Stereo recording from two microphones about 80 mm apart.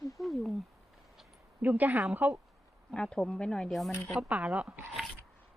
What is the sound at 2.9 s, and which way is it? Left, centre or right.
Speech, centre.